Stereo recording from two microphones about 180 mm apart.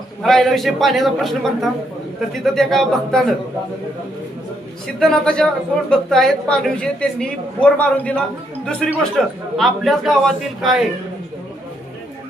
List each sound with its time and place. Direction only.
0.2 s a woman's voice: centre (ahead or behind)
4.9 s a woman's voice: 5° left (ahead or behind)